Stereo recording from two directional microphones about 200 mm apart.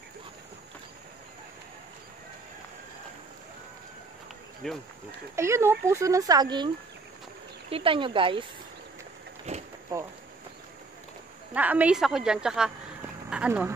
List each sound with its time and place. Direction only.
4.6 s a woman's voice: centre (ahead or behind)
5.3 s speech: 15° right (ahead or behind)
7.7 s speech: 25° right (ahead or behind)
9.5 s a sound: 30° right (ahead or behind)
11.5 s a woman's voice: 5° right (ahead or behind)